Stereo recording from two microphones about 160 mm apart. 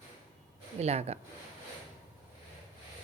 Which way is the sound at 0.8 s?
40° right (ahead or behind).